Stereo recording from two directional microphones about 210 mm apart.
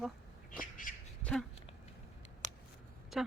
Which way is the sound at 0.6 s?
40° left (ahead or behind).